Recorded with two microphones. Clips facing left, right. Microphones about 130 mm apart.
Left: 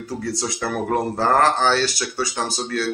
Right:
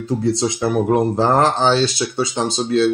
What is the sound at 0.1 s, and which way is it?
Speech, 20° right (ahead or behind).